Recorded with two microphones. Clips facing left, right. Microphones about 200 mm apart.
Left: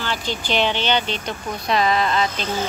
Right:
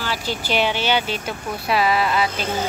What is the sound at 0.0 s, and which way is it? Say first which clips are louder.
Speech: even; 5° right (ahead or behind).